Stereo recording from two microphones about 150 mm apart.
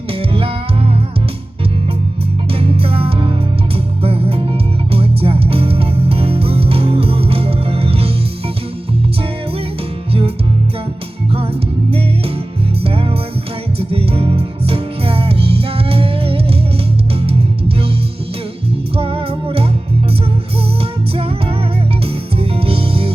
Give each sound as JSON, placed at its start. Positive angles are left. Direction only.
{"t": 0.1, "sound": "music", "side_deg": -40}
{"t": 2.5, "sound": "music", "side_deg": -40}
{"t": 10.1, "sound": "music", "side_deg": -40}
{"t": 12.8, "sound": "music", "side_deg": -40}
{"t": 18.9, "sound": "music", "side_deg": -40}
{"t": 22.0, "sound": "music", "side_deg": -40}